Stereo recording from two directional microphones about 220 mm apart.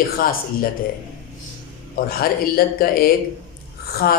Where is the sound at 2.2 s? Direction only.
45° left (ahead or behind).